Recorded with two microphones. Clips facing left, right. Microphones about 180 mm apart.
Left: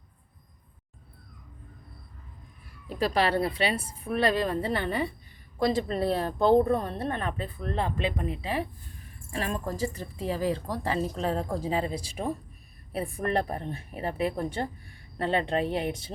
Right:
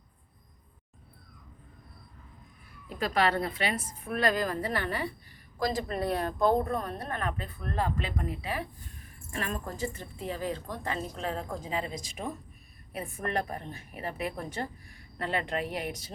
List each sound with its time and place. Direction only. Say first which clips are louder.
2.9 s a woman's voice: left 2 dB; 30° left (ahead or behind)